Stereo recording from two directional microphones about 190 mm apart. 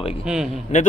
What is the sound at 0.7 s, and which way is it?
Speech, 40° left (ahead or behind).